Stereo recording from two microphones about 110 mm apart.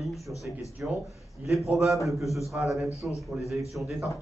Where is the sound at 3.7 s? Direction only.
Centre (ahead or behind).